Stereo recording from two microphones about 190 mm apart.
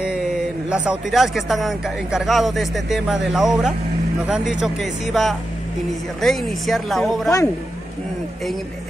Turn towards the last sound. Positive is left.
turn(degrees=0)  # may be behind; listen again after turning